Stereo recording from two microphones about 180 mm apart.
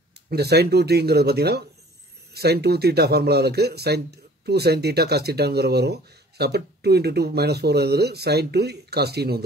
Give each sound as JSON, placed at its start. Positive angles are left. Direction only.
{"t": 0.3, "sound": "speech", "side_deg": -65}